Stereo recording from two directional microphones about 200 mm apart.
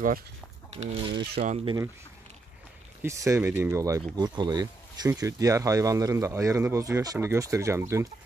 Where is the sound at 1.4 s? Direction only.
30° right (ahead or behind).